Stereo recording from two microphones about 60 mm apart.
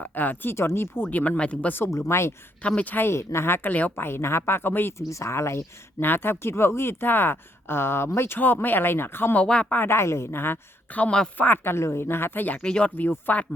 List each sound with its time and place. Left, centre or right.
0.0 s speech: left
0.5 s speech: left
1.9 s speech: left
2.6 s speech: left
3.0 s speech: left
3.9 s speech: left
4.9 s speech: left
6.0 s speech: left
8.4 s speech: left
9.3 s speech: centre
9.7 s speech: left
10.9 s speech: left
12.6 s speech: centre
13.0 s speech: left